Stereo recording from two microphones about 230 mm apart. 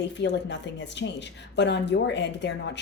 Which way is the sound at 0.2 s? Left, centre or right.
Left.